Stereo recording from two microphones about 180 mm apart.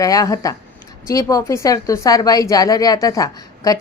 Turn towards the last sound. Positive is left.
turn(degrees=20)  # may be behind; listen again after turning